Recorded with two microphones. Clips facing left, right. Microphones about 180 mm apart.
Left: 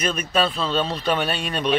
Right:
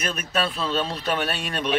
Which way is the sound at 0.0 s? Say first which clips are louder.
Left 4 dB; 5° right (ahead or behind).